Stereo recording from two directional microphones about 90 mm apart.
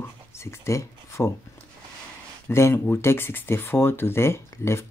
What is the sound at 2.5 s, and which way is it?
Speech, 30° left (ahead or behind).